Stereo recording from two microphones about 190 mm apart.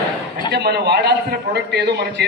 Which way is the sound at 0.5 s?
60° right (ahead or behind).